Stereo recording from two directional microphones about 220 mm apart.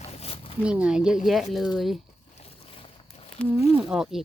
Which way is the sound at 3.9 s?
Centre (ahead or behind).